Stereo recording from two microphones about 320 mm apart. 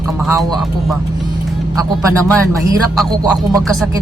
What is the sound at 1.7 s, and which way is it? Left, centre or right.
A man's voice, centre.